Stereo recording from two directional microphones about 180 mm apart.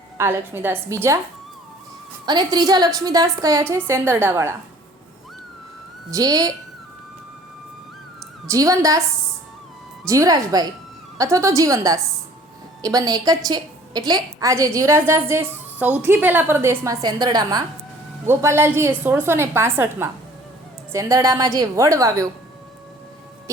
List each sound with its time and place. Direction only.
0.2 s a woman's voice: 10° right (ahead or behind)
2.2 s a woman's voice: 25° right (ahead or behind)
6.1 s a woman's voice: 20° right (ahead or behind)
8.4 s a woman's voice: 20° right (ahead or behind)
10.1 s a woman's voice: 20° right (ahead or behind)